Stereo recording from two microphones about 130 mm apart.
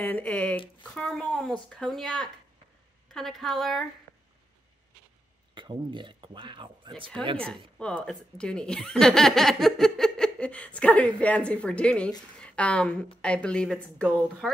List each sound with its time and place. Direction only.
0.0 s a woman's voice: 15° left (ahead or behind)
5.5 s speech: 40° right (ahead or behind)
7.3 s speech: 10° left (ahead or behind)